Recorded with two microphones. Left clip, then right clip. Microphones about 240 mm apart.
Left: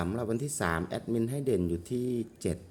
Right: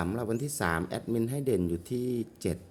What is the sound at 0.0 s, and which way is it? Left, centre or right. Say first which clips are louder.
Speech: even; centre.